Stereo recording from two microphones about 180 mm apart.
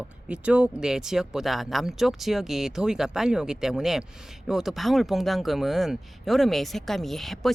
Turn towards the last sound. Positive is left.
turn(degrees=0)  # may be behind; listen again after turning